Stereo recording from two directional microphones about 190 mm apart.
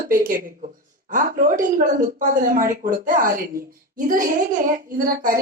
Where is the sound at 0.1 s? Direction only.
45° right (ahead or behind).